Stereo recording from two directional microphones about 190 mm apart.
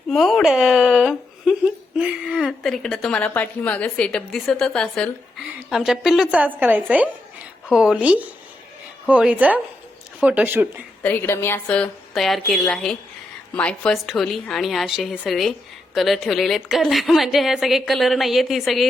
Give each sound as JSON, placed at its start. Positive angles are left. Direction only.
{"t": 0.1, "sound": "speech", "side_deg": 0}
{"t": 11.0, "sound": "speech", "side_deg": 10}